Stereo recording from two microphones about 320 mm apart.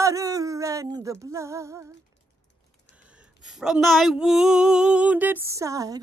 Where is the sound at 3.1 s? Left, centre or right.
Centre.